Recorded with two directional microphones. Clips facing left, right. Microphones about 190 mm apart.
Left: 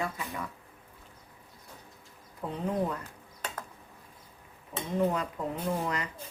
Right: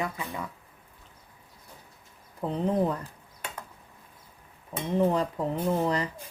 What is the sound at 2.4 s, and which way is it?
Speech, 30° right (ahead or behind).